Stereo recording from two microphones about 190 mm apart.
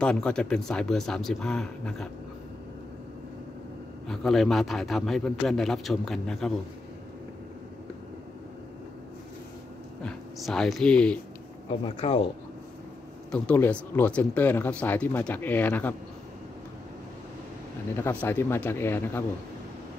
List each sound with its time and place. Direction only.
0.0 s a man's voice: 5° left (ahead or behind)
4.1 s a man's voice: centre (ahead or behind)
10.0 s a man's voice: 5° left (ahead or behind)
11.8 s speech: 30° left (ahead or behind)
13.3 s speech: 5° left (ahead or behind)
18.2 s speech: 10° left (ahead or behind)